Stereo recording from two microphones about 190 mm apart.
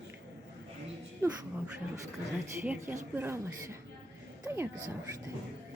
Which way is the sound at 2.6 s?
15° right (ahead or behind).